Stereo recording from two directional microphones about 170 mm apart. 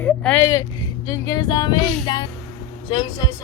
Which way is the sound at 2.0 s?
25° left (ahead or behind).